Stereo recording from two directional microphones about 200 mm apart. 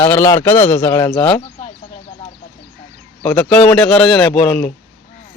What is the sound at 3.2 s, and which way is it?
A man's voice, 5° left (ahead or behind).